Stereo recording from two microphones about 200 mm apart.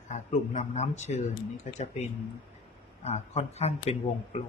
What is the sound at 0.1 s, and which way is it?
Speech, 35° left (ahead or behind).